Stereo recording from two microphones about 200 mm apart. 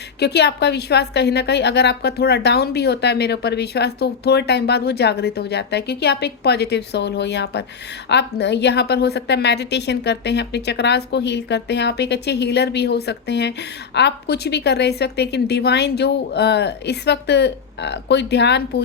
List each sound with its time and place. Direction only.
0.2 s a woman's voice: 55° left (ahead or behind)